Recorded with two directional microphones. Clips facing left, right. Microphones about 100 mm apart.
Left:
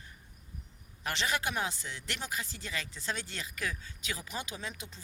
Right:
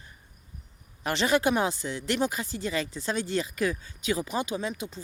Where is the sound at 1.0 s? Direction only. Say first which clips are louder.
Right 9 dB; 25° right (ahead or behind).